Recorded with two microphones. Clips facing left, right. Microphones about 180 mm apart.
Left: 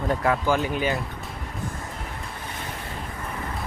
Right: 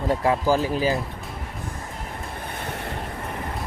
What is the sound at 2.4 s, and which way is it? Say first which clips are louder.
Vehicle: right 3 dB; 65° right (ahead or behind).